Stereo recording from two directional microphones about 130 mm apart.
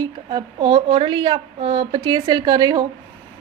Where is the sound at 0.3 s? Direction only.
35° right (ahead or behind).